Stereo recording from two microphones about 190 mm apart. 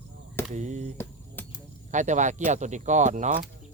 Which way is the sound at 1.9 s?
40° right (ahead or behind).